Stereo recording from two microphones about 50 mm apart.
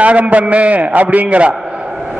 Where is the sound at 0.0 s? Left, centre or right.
Right.